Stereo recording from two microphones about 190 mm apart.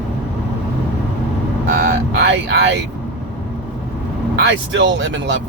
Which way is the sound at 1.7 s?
65° right (ahead or behind).